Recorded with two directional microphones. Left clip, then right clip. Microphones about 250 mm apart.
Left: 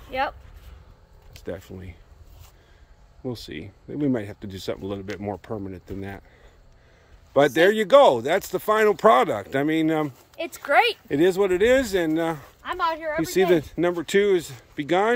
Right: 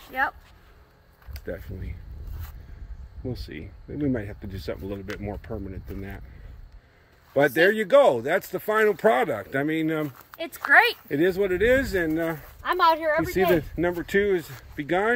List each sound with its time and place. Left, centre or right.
1.4 s speech: centre
3.3 s speech: centre
7.3 s speech: centre
10.7 s speech: left
11.1 s speech: centre
12.6 s speech: right
13.3 s speech: centre